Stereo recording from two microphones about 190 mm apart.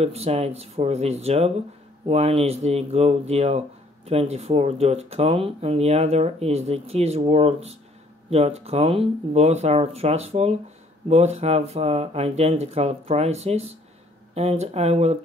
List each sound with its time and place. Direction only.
0.0 s speech: 35° right (ahead or behind)